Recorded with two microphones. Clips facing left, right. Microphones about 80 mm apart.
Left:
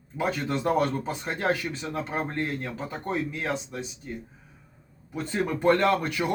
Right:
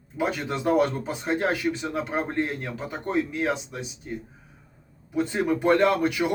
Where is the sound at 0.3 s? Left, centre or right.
Centre.